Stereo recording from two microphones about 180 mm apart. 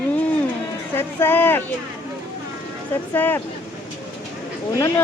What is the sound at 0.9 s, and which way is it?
Speech, 10° left (ahead or behind).